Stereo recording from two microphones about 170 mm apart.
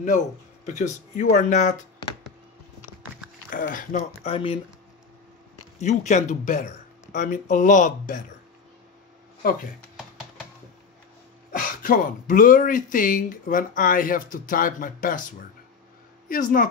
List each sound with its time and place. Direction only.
0.7 s speech: 45° left (ahead or behind)
3.4 s speech: 50° left (ahead or behind); by 4.6 s 35° left (ahead or behind)
5.8 s speech: 45° left (ahead or behind)
9.4 s speech: 55° left (ahead or behind)
11.5 s speech: 55° left (ahead or behind)
16.3 s speech: 55° left (ahead or behind)